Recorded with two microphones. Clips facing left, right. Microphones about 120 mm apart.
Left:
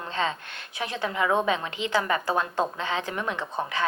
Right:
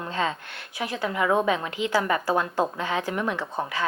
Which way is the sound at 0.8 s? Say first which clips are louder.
Right 1 dB; 25° left (ahead or behind).